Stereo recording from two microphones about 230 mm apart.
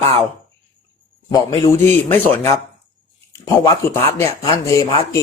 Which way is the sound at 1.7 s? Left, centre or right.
Centre.